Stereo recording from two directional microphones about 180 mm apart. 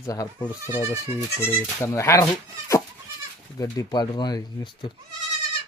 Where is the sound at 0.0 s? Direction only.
20° left (ahead or behind).